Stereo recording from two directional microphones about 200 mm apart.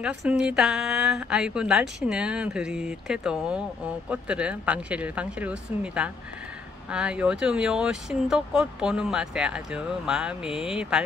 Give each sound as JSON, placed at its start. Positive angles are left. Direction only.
{"t": 0.0, "sound": "a woman's voice", "side_deg": -5}